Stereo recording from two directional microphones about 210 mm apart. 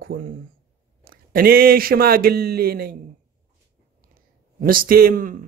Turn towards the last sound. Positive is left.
turn(degrees=-40)  # may be behind; listen again after turning